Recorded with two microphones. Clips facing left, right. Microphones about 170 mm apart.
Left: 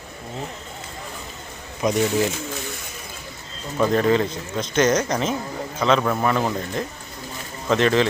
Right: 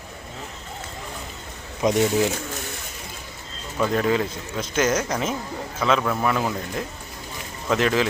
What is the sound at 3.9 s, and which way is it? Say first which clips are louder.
Speech: left 3 dB; 5° right (ahead or behind).